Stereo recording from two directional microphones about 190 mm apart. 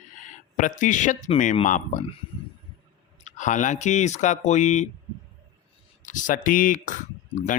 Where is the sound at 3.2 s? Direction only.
40° left (ahead or behind).